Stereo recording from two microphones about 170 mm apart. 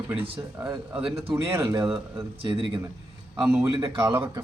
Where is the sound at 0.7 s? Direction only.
30° right (ahead or behind).